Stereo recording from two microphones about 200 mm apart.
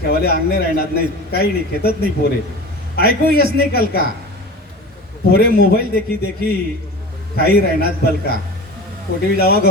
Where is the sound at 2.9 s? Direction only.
50° left (ahead or behind).